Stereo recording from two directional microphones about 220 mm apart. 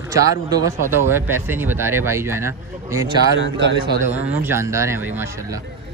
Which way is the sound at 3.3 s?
55° right (ahead or behind).